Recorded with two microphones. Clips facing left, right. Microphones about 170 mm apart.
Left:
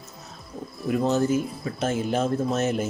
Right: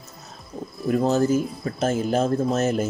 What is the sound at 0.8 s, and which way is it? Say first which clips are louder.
Speech: right 2 dB; 40° right (ahead or behind).